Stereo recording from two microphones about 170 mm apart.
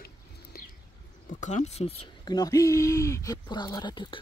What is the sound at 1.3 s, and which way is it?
Speech, 45° left (ahead or behind).